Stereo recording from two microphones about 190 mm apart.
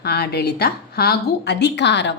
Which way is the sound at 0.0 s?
55° left (ahead or behind).